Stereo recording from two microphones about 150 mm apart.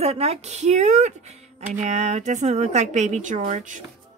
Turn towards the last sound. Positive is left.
turn(degrees=-50)  # may be behind; listen again after turning